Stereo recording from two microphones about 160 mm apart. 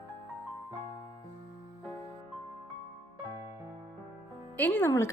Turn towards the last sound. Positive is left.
turn(degrees=15)  # may be behind; listen again after turning